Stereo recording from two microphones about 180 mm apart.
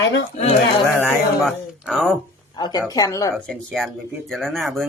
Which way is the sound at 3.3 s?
Centre (ahead or behind).